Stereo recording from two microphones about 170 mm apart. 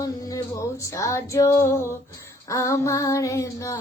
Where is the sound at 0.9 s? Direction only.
20° left (ahead or behind).